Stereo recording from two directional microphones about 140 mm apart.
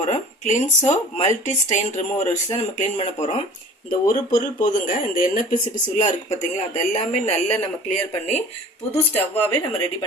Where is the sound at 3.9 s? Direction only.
70° left (ahead or behind); by 8.4 s 55° left (ahead or behind).